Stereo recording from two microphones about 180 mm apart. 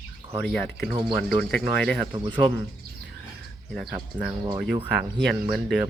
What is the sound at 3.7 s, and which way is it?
Speech, centre (ahead or behind).